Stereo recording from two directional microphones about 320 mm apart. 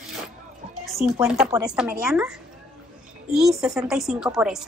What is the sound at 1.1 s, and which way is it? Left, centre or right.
A woman's voice, centre.